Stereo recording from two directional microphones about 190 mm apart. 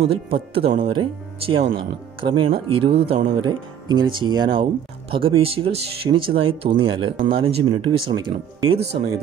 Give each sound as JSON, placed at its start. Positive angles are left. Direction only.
{"t": 0.0, "sound": "speech", "side_deg": -30}